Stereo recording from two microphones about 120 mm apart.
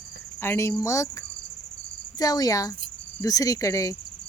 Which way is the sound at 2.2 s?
30° left (ahead or behind).